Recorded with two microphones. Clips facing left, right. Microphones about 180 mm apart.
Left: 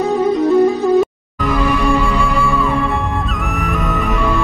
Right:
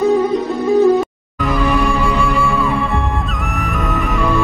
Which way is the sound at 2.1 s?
Centre (ahead or behind).